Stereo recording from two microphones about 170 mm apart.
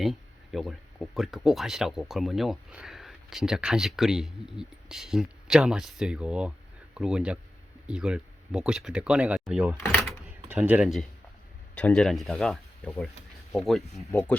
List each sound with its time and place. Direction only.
0.0 s speech: centre (ahead or behind)
10.5 s speech: 10° right (ahead or behind)
10.8 s speech: centre (ahead or behind)